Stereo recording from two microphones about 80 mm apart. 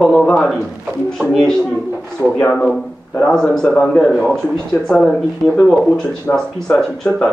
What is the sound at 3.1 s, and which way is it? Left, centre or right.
Speech, centre.